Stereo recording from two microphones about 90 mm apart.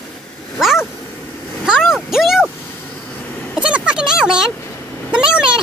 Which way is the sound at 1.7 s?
5° right (ahead or behind).